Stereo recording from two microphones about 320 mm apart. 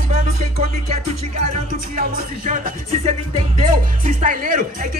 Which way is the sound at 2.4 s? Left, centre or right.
Right.